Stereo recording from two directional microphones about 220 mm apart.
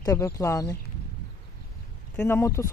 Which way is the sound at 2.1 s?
10° left (ahead or behind).